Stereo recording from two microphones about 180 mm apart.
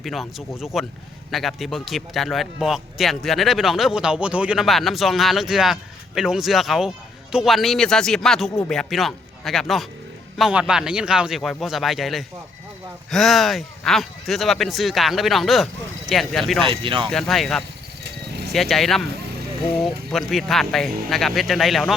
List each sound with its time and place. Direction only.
0.0 s a man's voice: centre (ahead or behind)
16.6 s speech: 30° right (ahead or behind)
17.1 s a man's voice: centre (ahead or behind)